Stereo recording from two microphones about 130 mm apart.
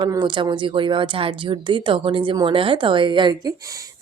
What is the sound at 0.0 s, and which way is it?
A woman's voice, 35° right (ahead or behind).